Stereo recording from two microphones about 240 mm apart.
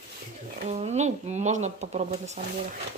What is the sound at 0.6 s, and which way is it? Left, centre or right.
A woman's voice, right.